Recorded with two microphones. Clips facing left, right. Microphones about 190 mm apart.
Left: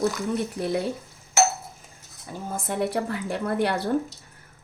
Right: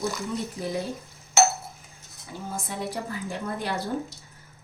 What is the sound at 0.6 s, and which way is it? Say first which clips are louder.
Speech: left 4 dB; 70° left (ahead or behind).